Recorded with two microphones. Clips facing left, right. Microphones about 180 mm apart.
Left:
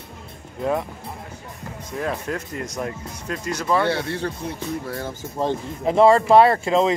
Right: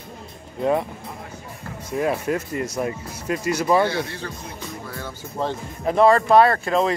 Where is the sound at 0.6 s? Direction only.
Centre (ahead or behind).